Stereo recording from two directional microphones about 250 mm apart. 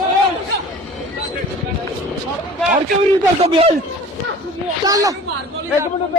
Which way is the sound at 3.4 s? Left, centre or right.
Right.